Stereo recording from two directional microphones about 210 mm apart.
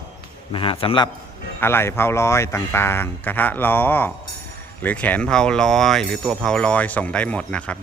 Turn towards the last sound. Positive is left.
turn(degrees=5)  # may be behind; listen again after turning